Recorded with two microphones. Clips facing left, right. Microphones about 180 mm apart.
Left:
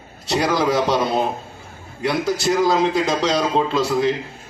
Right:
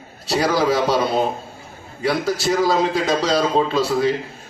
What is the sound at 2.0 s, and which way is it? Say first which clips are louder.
A man's voice: even; centre (ahead or behind).